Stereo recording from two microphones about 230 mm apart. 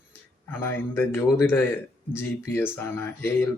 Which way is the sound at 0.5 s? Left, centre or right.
Centre.